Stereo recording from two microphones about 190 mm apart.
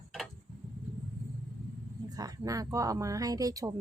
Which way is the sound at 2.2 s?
20° right (ahead or behind).